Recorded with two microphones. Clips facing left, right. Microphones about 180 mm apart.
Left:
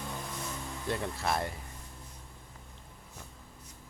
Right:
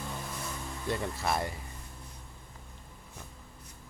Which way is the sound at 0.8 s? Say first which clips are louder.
Right 1 dB; centre (ahead or behind).